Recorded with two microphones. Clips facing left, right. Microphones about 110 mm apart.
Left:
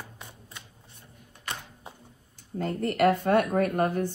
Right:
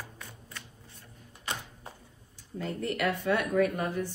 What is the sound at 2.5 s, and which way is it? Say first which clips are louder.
A woman's voice: left 5 dB; 50° left (ahead or behind).